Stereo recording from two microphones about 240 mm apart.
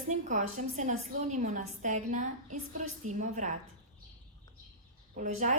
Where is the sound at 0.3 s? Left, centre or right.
Right.